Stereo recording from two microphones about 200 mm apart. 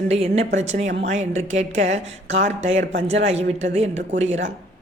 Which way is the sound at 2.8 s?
65° right (ahead or behind).